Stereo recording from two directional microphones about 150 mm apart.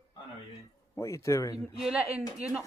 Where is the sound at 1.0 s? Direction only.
20° left (ahead or behind).